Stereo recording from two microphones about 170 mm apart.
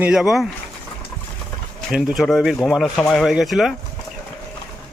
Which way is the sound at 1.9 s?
Centre (ahead or behind).